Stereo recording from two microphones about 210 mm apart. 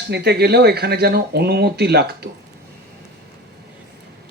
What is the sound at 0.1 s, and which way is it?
Speech, 50° right (ahead or behind).